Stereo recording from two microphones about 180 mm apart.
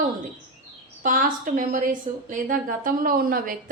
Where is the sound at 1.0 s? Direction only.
50° right (ahead or behind).